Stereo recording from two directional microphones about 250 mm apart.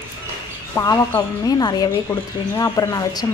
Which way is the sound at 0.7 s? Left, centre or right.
Centre.